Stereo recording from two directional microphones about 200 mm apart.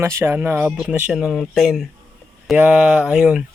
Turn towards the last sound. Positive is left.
turn(degrees=-5)  # may be behind; listen again after turning